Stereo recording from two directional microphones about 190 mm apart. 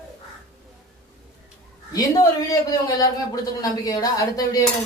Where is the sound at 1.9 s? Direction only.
20° left (ahead or behind).